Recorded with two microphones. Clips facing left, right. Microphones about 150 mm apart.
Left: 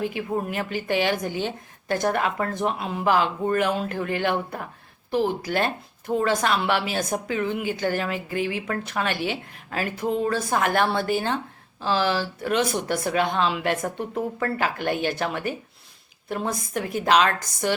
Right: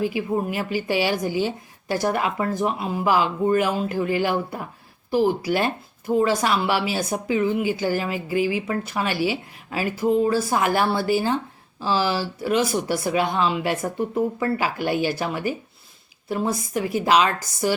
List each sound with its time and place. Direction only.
0.0 s speech: 5° right (ahead or behind)